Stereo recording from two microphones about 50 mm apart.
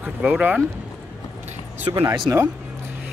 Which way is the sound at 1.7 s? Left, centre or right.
Right.